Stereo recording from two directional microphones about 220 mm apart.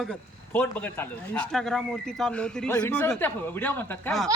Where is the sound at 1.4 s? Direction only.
5° left (ahead or behind).